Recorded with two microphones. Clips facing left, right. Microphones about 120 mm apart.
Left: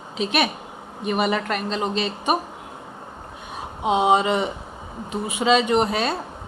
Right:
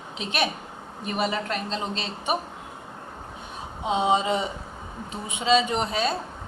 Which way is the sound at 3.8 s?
70° left (ahead or behind).